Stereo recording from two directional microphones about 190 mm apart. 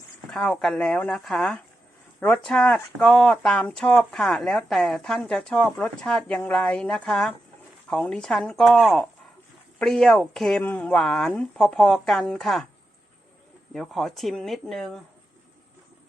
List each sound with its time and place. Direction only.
0.3 s speech: 5° left (ahead or behind)
13.7 s speech: centre (ahead or behind)